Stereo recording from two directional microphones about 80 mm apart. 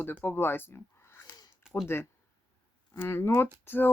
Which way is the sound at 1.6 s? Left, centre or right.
Centre.